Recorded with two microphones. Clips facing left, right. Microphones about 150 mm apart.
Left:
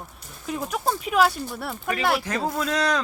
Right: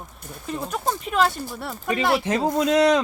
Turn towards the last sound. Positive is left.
turn(degrees=-25)  # may be behind; listen again after turning